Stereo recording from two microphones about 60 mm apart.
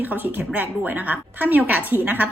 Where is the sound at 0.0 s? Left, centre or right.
Right.